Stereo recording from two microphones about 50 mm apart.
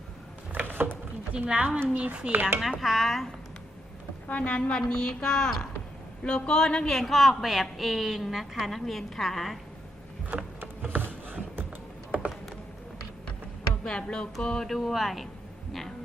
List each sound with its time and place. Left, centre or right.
0.5 s mechanisms: right
1.3 s a woman's voice: right
2.3 s speech: right
2.6 s speech: centre
4.3 s a woman's voice: left; by 9.6 s centre
10.3 s a sound: right
13.8 s a woman's voice: centre